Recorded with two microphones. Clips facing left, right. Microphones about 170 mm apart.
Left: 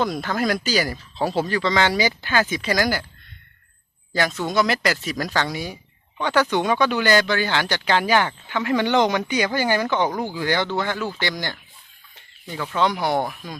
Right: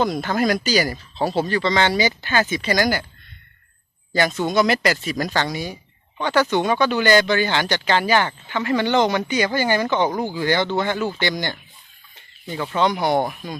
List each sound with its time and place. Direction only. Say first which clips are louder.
0.0 s speech: right 3 dB; centre (ahead or behind)
4.1 s speech: right 3 dB; centre (ahead or behind)
5.1 s speech: right 1 dB; 25° right (ahead or behind)
6.5 s speech: right 1 dB; 10° left (ahead or behind)
10.1 s speech: right 2 dB; 10° right (ahead or behind)
10.4 s speech: right 2 dB; 10° left (ahead or behind)
10.7 s speech: right 3 dB; 20° right (ahead or behind)
11.2 s speech: right 3 dB; 5° left (ahead or behind)
12.5 s speech: right 2 dB; 10° right (ahead or behind)
13.2 s speech: right 3 dB; 5° right (ahead or behind)